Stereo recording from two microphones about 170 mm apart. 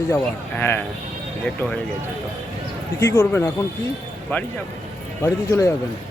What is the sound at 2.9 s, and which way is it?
Speech, 15° left (ahead or behind).